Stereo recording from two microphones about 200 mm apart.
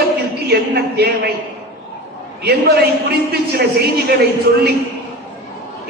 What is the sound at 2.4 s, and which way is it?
A man's voice, 50° right (ahead or behind).